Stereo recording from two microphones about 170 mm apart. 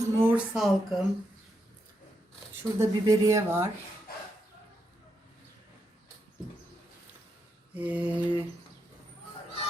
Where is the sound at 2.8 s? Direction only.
20° right (ahead or behind).